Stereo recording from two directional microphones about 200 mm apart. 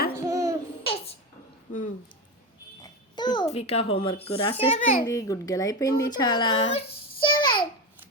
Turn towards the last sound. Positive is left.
turn(degrees=25)  # may be behind; listen again after turning